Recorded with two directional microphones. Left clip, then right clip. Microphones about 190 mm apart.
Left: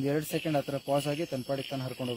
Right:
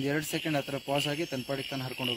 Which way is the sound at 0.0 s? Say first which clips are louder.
Left 1 dB; 50° left (ahead or behind).